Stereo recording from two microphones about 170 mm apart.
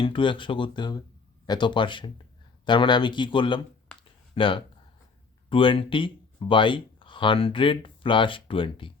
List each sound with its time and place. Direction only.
0.0 s speech: 30° left (ahead or behind)
4.0 s a sound: 30° left (ahead or behind)
5.5 s speech: 30° left (ahead or behind)